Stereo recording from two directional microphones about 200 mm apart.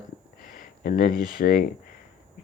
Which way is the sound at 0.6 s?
45° left (ahead or behind).